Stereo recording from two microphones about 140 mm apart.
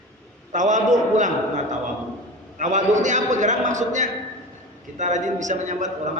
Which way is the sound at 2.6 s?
60° right (ahead or behind).